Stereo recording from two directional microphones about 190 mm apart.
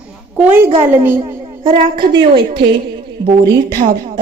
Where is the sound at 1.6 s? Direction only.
25° right (ahead or behind).